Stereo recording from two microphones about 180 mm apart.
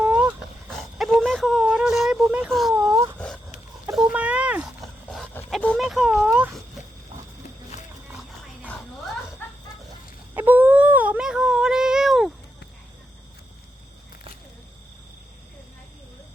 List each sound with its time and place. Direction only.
0.0 s dog: 10° right (ahead or behind)
2.7 s a sound: 15° right (ahead or behind)
3.2 s dog: 5° left (ahead or behind)
3.9 s dog: 5° right (ahead or behind)
7.7 s wild animals: 40° left (ahead or behind)
10.3 s a sound: 10° right (ahead or behind)